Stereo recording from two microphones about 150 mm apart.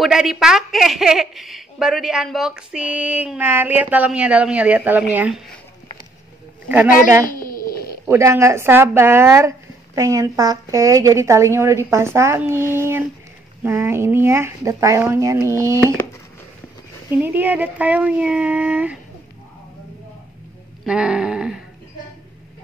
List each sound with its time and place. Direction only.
0.0 s a woman's voice: 5° right (ahead or behind)
6.7 s speech: 15° right (ahead or behind)
7.2 s a sound: 70° left (ahead or behind)
8.1 s a woman's voice: 20° right (ahead or behind)
17.2 s speech: 10° right (ahead or behind)
20.8 s a woman's voice: 5° right (ahead or behind)